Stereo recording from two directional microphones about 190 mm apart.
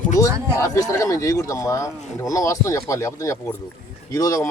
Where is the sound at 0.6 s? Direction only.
15° left (ahead or behind).